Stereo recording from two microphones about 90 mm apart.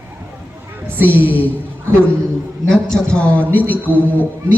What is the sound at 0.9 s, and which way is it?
Speech, 20° right (ahead or behind).